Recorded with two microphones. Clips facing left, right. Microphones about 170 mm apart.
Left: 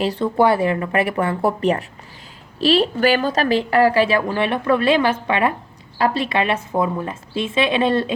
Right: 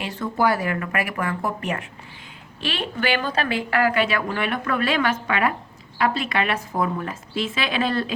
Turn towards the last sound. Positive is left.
turn(degrees=25)  # may be behind; listen again after turning